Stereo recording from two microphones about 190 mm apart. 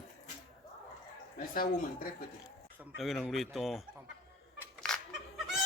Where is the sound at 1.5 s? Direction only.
50° left (ahead or behind).